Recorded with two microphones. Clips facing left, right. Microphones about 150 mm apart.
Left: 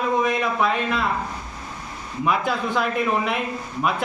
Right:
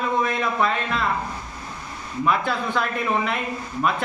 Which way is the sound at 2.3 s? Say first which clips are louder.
Left 1 dB; 5° left (ahead or behind).